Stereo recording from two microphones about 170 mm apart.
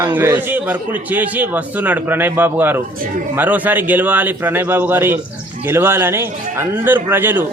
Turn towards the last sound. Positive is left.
turn(degrees=-10)  # may be behind; listen again after turning